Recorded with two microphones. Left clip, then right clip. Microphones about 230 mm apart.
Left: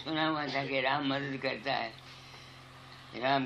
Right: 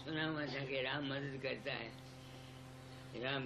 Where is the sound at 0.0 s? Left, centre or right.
Left.